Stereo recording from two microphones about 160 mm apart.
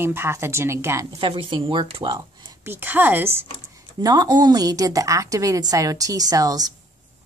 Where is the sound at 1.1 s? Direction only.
30° right (ahead or behind).